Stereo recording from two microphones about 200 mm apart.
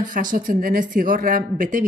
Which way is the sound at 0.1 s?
40° right (ahead or behind).